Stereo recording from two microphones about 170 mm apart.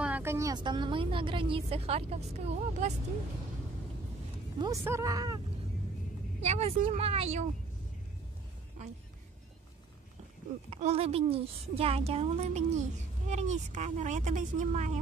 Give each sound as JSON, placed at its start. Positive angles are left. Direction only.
{"t": 0.0, "sound": "speech", "side_deg": -10}
{"t": 4.6, "sound": "speech", "side_deg": -20}
{"t": 6.4, "sound": "speech", "side_deg": -40}
{"t": 10.7, "sound": "a woman's voice", "side_deg": -35}